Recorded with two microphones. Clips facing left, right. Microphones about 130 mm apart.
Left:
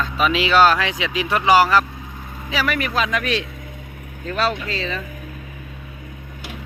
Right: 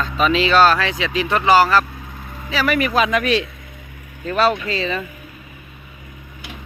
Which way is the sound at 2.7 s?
5° right (ahead or behind).